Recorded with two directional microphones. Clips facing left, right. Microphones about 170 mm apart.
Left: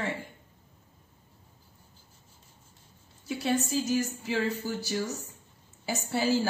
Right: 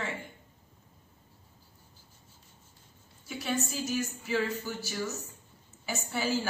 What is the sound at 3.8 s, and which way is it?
A woman's voice, 35° left (ahead or behind).